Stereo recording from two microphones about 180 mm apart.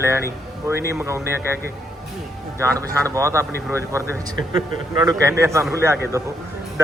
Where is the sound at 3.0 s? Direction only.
15° right (ahead or behind).